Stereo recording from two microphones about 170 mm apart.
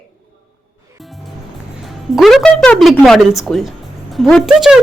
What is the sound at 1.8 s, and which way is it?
Speech, centre (ahead or behind).